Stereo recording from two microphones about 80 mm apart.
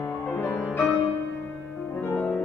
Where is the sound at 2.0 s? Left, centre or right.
Left.